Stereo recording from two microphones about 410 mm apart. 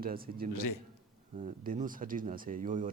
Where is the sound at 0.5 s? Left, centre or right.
Left.